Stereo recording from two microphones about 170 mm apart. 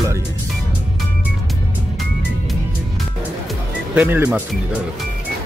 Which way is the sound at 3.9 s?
10° right (ahead or behind).